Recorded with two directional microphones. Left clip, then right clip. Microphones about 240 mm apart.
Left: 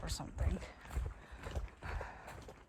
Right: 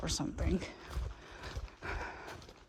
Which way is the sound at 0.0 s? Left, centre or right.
Right.